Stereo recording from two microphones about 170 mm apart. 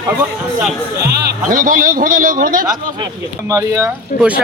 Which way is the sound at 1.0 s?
70° right (ahead or behind).